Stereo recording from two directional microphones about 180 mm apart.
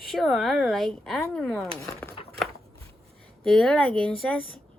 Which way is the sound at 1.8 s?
15° left (ahead or behind).